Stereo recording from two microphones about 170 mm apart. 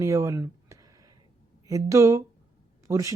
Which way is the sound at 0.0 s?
15° right (ahead or behind).